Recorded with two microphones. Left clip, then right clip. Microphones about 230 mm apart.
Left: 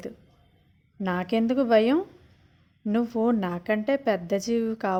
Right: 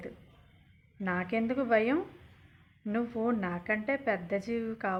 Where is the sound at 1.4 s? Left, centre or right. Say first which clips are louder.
Left 7 dB; left.